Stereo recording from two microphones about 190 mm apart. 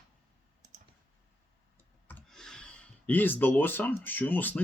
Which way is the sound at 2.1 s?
5° left (ahead or behind).